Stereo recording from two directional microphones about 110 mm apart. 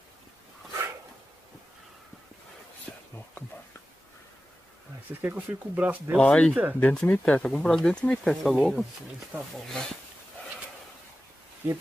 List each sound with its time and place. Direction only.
5.1 s speech: 15° right (ahead or behind)
6.1 s speech: 10° left (ahead or behind)
6.5 s speech: 15° right (ahead or behind)
6.8 s speech: 10° left (ahead or behind)
11.6 s speech: 15° right (ahead or behind)